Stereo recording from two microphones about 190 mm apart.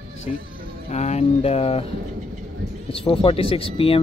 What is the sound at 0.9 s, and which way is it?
Speech, 35° left (ahead or behind).